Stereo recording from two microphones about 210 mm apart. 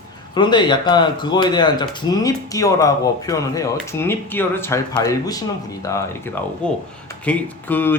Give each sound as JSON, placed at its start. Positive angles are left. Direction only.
{"t": 0.3, "sound": "speech", "side_deg": 20}
{"t": 6.6, "sound": "speech", "side_deg": 5}